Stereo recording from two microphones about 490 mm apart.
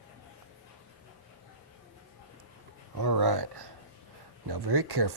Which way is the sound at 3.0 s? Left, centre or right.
Right.